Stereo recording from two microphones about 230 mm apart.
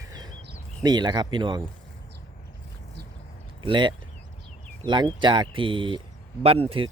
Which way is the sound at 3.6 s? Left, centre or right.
Right.